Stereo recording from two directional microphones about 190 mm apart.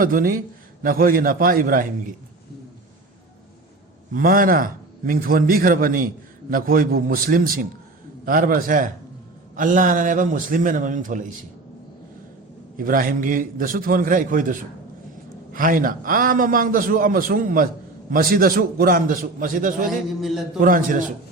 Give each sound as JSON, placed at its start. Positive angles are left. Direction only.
{"t": 0.0, "sound": "a man's voice", "side_deg": -50}
{"t": 4.1, "sound": "a man's voice", "side_deg": -50}
{"t": 12.7, "sound": "a man's voice", "side_deg": -45}
{"t": 20.2, "sound": "a man's voice", "side_deg": -5}
{"t": 20.6, "sound": "a man's voice", "side_deg": -45}